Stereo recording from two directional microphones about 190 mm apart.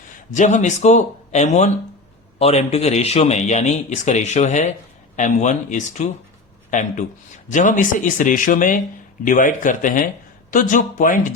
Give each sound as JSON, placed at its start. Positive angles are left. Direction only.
{"t": 0.3, "sound": "speech", "side_deg": 40}